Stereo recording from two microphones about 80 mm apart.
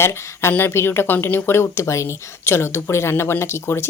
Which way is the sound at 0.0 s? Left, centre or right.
Left.